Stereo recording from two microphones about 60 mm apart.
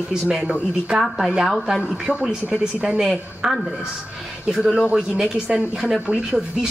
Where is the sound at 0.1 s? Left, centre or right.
Centre.